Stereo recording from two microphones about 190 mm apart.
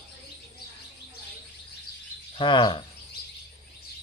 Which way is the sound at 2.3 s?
25° left (ahead or behind).